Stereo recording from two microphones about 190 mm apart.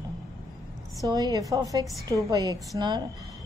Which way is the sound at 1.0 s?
20° right (ahead or behind).